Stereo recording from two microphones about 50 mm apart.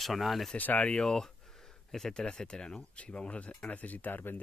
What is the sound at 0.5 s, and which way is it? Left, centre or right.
Speech, left.